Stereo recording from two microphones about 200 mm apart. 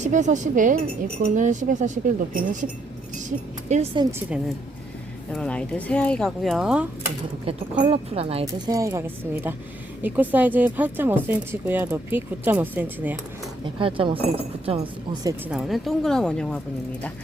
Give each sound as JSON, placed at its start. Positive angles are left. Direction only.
{"t": 0.1, "sound": "speech", "side_deg": -35}
{"t": 5.3, "sound": "speech", "side_deg": 5}
{"t": 7.4, "sound": "speech", "side_deg": -30}
{"t": 13.7, "sound": "speech", "side_deg": -25}
{"t": 15.4, "sound": "speech", "side_deg": 0}